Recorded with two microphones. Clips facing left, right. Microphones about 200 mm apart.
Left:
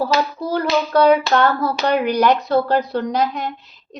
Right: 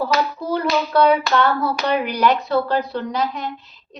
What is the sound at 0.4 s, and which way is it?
A woman's voice, 40° left (ahead or behind).